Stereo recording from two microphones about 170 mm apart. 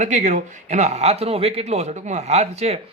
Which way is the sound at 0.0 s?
45° right (ahead or behind).